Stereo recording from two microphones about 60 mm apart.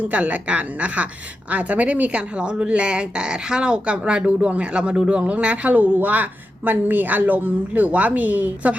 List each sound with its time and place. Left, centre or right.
0.0 s speech: right